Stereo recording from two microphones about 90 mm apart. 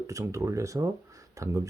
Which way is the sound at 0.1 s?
35° right (ahead or behind).